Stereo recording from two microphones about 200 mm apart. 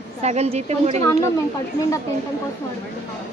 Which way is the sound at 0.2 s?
35° right (ahead or behind).